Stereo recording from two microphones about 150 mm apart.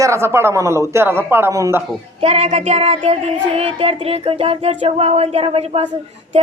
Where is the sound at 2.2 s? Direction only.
45° right (ahead or behind).